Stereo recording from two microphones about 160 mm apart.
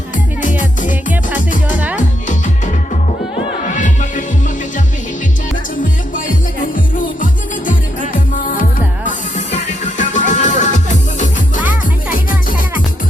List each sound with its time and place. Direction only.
0.4 s music: 55° left (ahead or behind)
3.8 s music: 50° left (ahead or behind)
7.7 s music: 55° left (ahead or behind)